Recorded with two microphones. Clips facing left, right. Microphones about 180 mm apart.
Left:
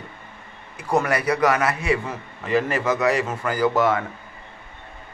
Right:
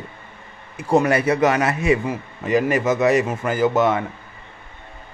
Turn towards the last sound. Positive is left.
turn(degrees=-20)  # may be behind; listen again after turning